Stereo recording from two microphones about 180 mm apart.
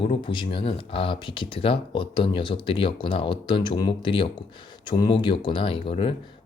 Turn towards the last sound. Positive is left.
turn(degrees=30)  # may be behind; listen again after turning